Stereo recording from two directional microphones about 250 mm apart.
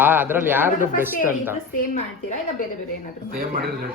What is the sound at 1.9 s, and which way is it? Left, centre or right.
Speech, left.